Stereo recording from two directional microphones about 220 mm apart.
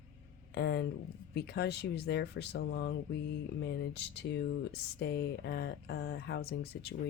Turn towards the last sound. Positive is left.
turn(degrees=45)  # may be behind; listen again after turning